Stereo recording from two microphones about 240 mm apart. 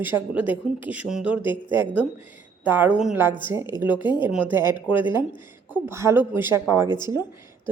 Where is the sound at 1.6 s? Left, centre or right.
Centre.